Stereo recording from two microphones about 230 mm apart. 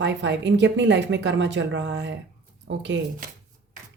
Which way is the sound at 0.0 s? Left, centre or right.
Right.